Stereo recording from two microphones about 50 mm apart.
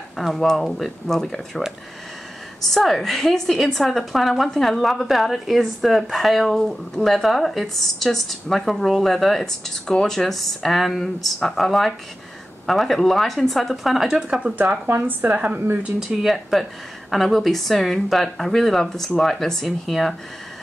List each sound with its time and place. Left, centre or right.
0.3 s a woman's voice: centre
2.6 s a woman's voice: centre
14.4 s speech: right
14.9 s speech: right
15.3 s speech: right
16.0 s a woman's voice: centre